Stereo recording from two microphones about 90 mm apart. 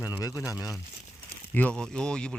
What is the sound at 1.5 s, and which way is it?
Speech, 15° left (ahead or behind).